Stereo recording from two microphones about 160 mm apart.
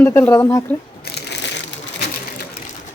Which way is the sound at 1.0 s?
90° left.